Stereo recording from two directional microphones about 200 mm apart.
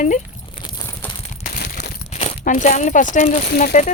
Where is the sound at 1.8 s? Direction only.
35° left (ahead or behind).